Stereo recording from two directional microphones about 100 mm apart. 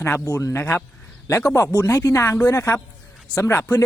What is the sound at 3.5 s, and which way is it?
Speech, 15° left (ahead or behind).